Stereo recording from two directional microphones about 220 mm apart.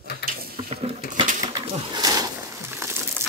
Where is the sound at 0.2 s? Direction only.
50° left (ahead or behind).